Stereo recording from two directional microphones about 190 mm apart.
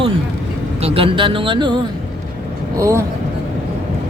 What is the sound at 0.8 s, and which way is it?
Speech, 30° right (ahead or behind).